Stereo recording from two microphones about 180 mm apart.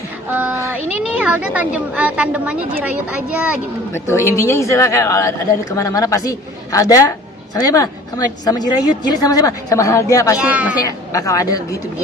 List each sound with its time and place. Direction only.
0.3 s a sound: 10° right (ahead or behind)
1.2 s a woman's voice: 10° right (ahead or behind)
3.9 s a woman's voice: 15° left (ahead or behind)
10.3 s a woman's voice: 5° right (ahead or behind)
10.8 s speech: 20° left (ahead or behind)